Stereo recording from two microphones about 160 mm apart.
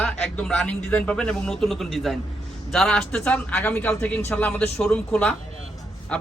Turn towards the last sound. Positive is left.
turn(degrees=5)  # may be behind; listen again after turning